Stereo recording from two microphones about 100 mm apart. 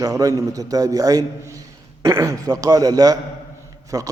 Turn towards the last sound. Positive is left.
turn(degrees=-40)  # may be behind; listen again after turning